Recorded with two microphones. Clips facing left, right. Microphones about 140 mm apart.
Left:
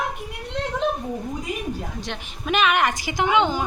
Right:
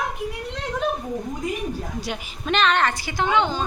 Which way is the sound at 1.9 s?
10° right (ahead or behind).